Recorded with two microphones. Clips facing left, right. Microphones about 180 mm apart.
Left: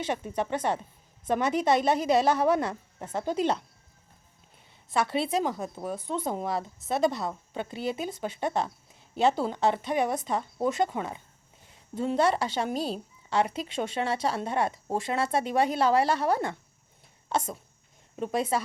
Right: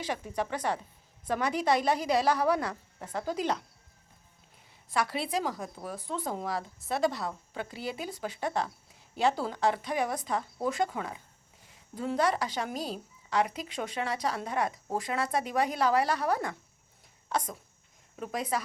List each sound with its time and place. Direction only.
0.0 s a woman's voice: 25° left (ahead or behind)
4.9 s a woman's voice: 25° left (ahead or behind)